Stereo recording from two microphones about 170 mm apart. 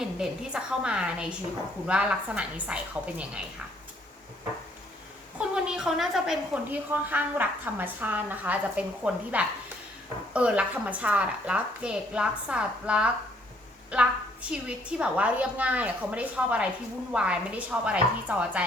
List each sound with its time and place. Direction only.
0.0 s a woman's voice: 5° right (ahead or behind)
5.4 s a woman's voice: 5° right (ahead or behind)